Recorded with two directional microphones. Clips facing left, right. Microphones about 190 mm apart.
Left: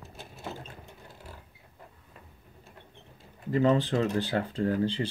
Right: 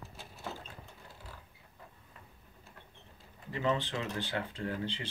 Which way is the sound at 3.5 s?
40° left (ahead or behind).